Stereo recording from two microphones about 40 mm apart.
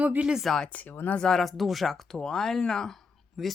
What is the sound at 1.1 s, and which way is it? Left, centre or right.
Speech, centre.